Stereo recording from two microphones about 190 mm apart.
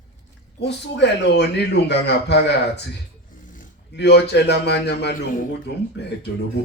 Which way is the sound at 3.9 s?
60° left (ahead or behind).